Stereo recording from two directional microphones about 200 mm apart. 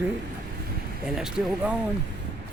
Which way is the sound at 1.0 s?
5° right (ahead or behind).